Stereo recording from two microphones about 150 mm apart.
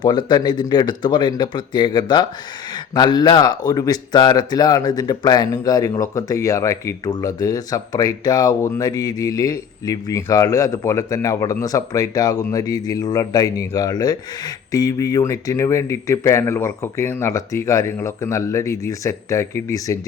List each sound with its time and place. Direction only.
0.0 s speech: 30° left (ahead or behind)